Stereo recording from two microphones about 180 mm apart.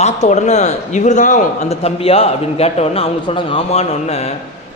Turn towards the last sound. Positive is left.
turn(degrees=35)  # may be behind; listen again after turning